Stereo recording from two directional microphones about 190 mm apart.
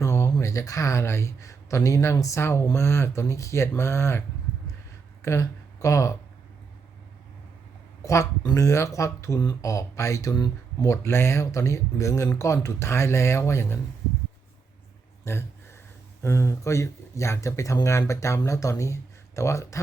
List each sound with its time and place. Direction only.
0.0 s speech: 15° left (ahead or behind)
5.2 s speech: 15° left (ahead or behind)
8.0 s speech: 15° left (ahead or behind)
15.2 s speech: 15° left (ahead or behind)